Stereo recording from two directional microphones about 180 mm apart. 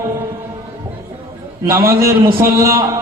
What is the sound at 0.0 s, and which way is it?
Music, 15° right (ahead or behind).